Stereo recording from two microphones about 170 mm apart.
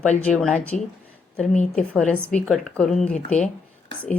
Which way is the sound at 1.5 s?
45° left (ahead or behind).